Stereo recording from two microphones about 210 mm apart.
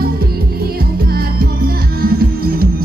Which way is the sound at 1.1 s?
45° right (ahead or behind).